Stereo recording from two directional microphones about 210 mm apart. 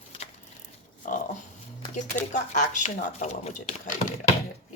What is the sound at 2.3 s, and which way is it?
A woman's voice, 35° left (ahead or behind).